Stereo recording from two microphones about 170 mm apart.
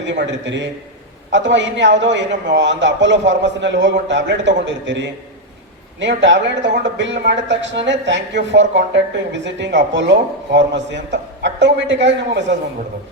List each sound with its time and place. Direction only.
0.0 s speech: 90° right